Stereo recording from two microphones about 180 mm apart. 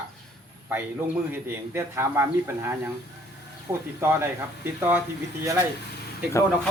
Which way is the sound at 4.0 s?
15° right (ahead or behind).